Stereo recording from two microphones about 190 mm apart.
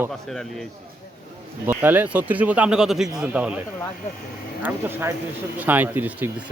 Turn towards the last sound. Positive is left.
turn(degrees=-10)  # may be behind; listen again after turning